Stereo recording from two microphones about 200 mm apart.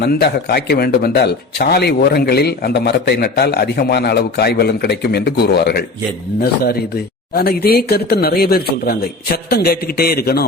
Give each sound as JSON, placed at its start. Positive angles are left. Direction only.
{"t": 0.0, "sound": "speech", "side_deg": 55}